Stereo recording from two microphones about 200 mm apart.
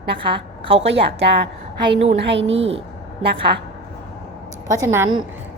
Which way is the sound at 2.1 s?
60° right (ahead or behind).